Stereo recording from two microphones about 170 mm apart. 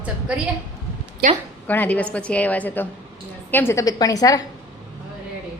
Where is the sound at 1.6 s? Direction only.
10° left (ahead or behind).